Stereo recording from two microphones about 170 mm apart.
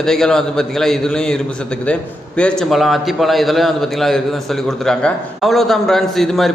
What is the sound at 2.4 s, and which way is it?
A man's voice, centre (ahead or behind).